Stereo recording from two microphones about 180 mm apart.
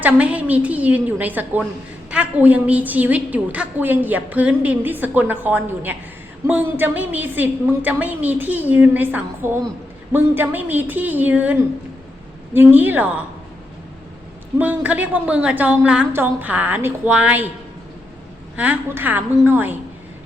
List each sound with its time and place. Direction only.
0.0 s a woman's voice: 5° right (ahead or behind)
14.6 s a woman's voice: 10° right (ahead or behind)
18.5 s a woman's voice: 10° right (ahead or behind)